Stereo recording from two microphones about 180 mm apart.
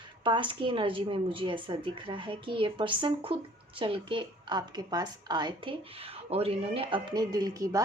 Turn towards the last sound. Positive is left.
turn(degrees=-20)  # may be behind; listen again after turning